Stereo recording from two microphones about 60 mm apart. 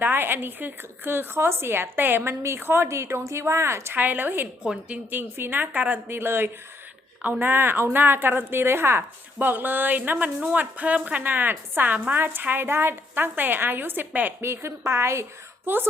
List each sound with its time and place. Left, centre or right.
0.0 s a woman's voice: right
3.9 s a woman's voice: right
6.1 s a woman's voice: right
11.2 s a woman's voice: right
14.4 s a woman's voice: right
15.6 s a woman's voice: right